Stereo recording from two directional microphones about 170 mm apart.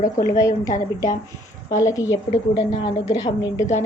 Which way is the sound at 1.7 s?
20° left (ahead or behind).